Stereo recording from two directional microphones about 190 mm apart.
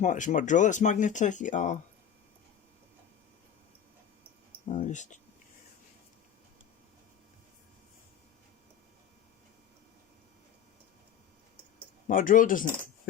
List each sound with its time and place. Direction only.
0.0 s speech: 40° left (ahead or behind)
4.7 s speech: 40° left (ahead or behind)
12.0 s speech: 45° left (ahead or behind)